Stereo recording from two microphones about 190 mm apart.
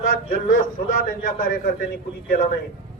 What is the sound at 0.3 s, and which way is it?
Speech, 45° left (ahead or behind).